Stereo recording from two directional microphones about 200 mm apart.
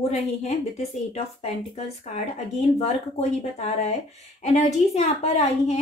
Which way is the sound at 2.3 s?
35° left (ahead or behind).